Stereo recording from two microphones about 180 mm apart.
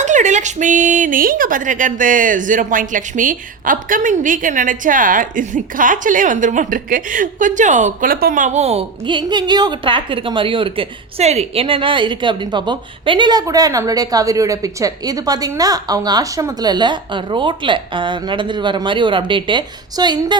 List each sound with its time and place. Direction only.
0.0 s a woman's voice: 40° right (ahead or behind); by 20.4 s 25° right (ahead or behind)